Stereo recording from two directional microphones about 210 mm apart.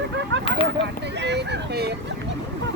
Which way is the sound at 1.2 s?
55° right (ahead or behind).